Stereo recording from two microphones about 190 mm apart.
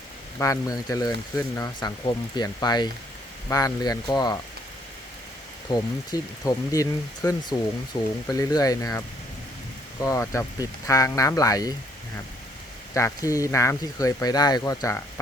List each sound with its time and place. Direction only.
0.3 s speech: 15° left (ahead or behind)
5.6 s speech: 20° left (ahead or behind)
12.9 s speech: 15° left (ahead or behind)